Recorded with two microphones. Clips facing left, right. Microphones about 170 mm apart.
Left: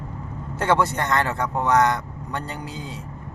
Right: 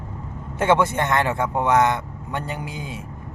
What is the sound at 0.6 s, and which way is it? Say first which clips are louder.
Speech: right 2 dB; 20° right (ahead or behind).